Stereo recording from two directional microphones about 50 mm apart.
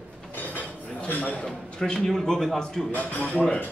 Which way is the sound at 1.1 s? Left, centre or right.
Left.